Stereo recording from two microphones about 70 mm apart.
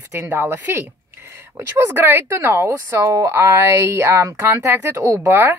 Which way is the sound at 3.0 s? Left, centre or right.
Right.